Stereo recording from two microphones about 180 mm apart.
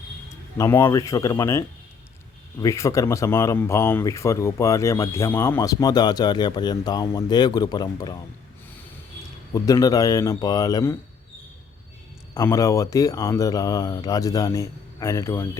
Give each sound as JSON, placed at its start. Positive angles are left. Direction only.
{"t": 0.5, "sound": "speech", "side_deg": 15}
{"t": 9.5, "sound": "speech", "side_deg": 20}
{"t": 12.3, "sound": "speech", "side_deg": 15}